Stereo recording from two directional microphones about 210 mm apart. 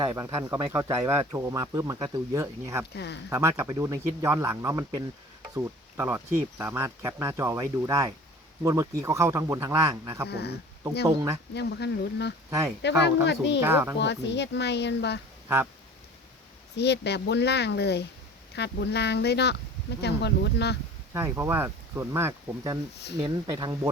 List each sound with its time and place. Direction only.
0.0 s speech: 15° right (ahead or behind)
2.9 s speech: 55° left (ahead or behind)
3.2 s speech: 15° right (ahead or behind)
10.2 s speech: 50° left (ahead or behind)
11.0 s speech: 15° right (ahead or behind)
11.5 s speech: 55° left (ahead or behind)
12.5 s speech: 15° right (ahead or behind)
13.2 s speech: 55° left (ahead or behind)
13.6 s speech: 10° right (ahead or behind)
14.0 s speech: 55° left (ahead or behind)
16.7 s speech: 55° left (ahead or behind)
21.1 s speech: 10° right (ahead or behind)